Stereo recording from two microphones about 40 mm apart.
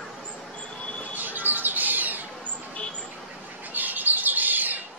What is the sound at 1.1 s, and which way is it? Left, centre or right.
Bird, right.